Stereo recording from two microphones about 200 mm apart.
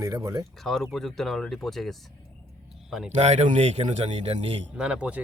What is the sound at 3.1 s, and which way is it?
Speech, 35° right (ahead or behind).